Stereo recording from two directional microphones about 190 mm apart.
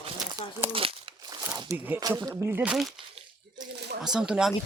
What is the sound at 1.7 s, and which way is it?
Speech, 10° right (ahead or behind).